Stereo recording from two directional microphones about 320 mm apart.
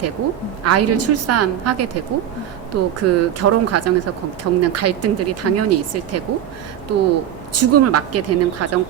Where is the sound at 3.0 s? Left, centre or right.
Right.